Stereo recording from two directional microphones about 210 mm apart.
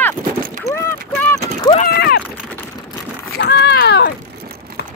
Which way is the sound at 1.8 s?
50° left (ahead or behind).